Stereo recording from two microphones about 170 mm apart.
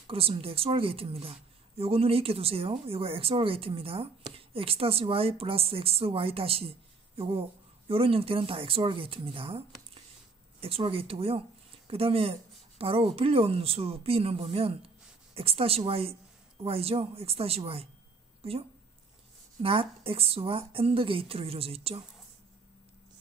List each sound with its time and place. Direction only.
0.0 s speech: 35° right (ahead or behind)